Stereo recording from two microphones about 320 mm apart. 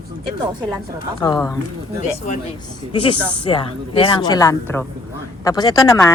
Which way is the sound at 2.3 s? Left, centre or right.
Left.